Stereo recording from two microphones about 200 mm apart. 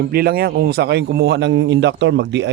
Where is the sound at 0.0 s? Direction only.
50° right (ahead or behind).